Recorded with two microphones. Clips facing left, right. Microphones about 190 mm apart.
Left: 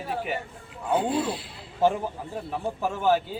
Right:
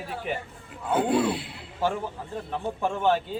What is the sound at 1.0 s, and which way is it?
Speech, 60° right (ahead or behind).